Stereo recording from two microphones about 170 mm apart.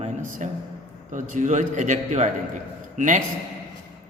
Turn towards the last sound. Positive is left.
turn(degrees=-50)  # may be behind; listen again after turning